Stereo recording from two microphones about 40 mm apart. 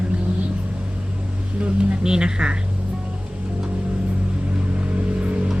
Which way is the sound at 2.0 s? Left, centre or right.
Centre.